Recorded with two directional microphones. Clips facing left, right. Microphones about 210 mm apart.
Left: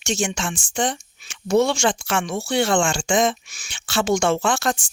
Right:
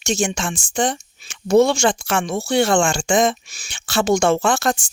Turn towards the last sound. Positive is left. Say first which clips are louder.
# right 3 dB
turn(degrees=-40)  # may be behind; listen again after turning